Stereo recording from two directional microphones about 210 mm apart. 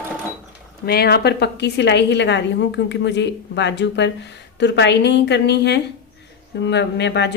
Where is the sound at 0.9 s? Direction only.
50° left (ahead or behind).